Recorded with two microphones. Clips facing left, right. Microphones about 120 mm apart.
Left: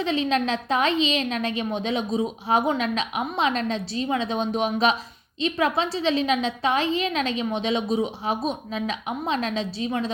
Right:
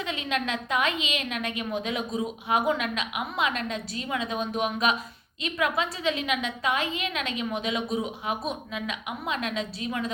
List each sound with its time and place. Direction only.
0.0 s a woman's voice: 30° left (ahead or behind)